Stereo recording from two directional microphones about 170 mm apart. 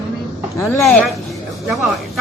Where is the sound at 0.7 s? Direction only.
Centre (ahead or behind).